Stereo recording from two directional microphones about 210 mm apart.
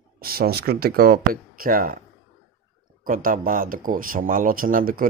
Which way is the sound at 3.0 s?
40° right (ahead or behind).